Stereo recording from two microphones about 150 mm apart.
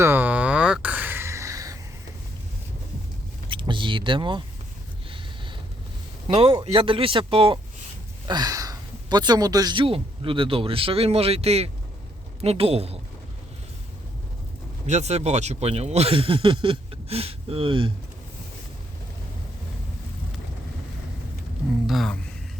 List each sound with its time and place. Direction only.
0.0 s a sound: 15° right (ahead or behind)
3.5 s vehicle: 35° right (ahead or behind)
6.2 s a man's voice: 35° right (ahead or behind)
8.3 s speech: 25° right (ahead or behind); by 13.0 s 40° right (ahead or behind)
14.8 s speech: 50° right (ahead or behind)
21.8 s speech: centre (ahead or behind)